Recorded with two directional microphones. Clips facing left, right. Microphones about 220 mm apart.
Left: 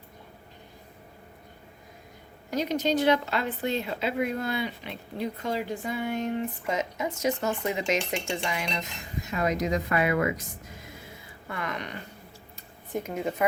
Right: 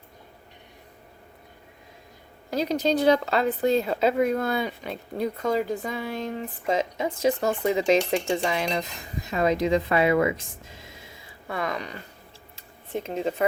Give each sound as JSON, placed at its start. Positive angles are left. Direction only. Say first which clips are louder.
{"t": 2.5, "sound": "cutlery", "louder": "right 2 dB", "side_deg": -35}
{"t": 6.3, "sound": "speech", "louder": "right 3 dB", "side_deg": -30}
{"t": 7.2, "sound": "cutlery", "louder": "right 5 dB", "side_deg": -30}
{"t": 11.7, "sound": "cutlery", "louder": "right 3 dB", "side_deg": -30}
{"t": 12.9, "sound": "speech", "louder": "right 2 dB", "side_deg": -25}